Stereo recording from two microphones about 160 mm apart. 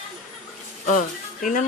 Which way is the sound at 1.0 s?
55° left (ahead or behind).